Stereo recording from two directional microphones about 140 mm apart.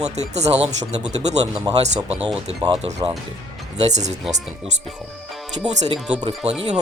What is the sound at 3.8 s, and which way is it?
Speech, 55° right (ahead or behind).